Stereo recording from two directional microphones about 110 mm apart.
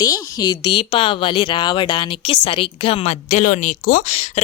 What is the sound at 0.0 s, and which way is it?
Speech, 35° left (ahead or behind).